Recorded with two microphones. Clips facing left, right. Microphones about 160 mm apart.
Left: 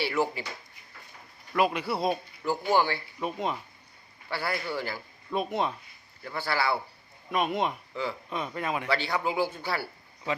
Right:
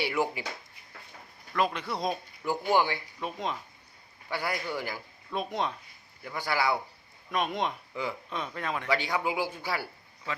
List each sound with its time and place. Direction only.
0.0 s speech: 15° right (ahead or behind)
1.5 s a man's voice: 10° left (ahead or behind)
2.7 s a man's voice: 15° right (ahead or behind)
3.2 s a man's voice: 5° left (ahead or behind)
4.3 s a man's voice: 15° right (ahead or behind)
5.3 s a man's voice: 5° left (ahead or behind)
6.2 s a man's voice: 15° right (ahead or behind)
7.3 s a man's voice: 5° left (ahead or behind)
8.9 s a man's voice: 10° right (ahead or behind)